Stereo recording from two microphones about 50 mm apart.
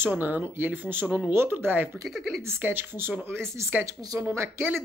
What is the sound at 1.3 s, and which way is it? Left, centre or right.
Speech, right.